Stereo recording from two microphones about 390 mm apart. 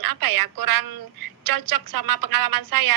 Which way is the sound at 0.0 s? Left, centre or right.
Right.